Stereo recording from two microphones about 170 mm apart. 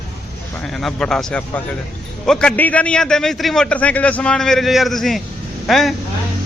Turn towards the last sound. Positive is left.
turn(degrees=0)  # may be behind; listen again after turning